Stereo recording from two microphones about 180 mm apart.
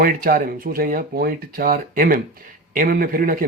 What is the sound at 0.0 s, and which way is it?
A man's voice, 50° right (ahead or behind).